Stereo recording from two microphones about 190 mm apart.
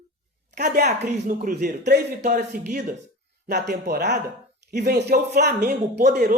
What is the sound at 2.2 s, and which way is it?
Speech, 45° right (ahead or behind).